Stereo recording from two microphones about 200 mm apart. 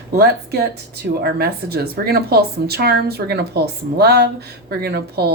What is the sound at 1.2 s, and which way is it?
Speech, 50° right (ahead or behind).